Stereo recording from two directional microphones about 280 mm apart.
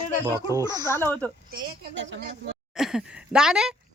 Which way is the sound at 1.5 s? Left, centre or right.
Right.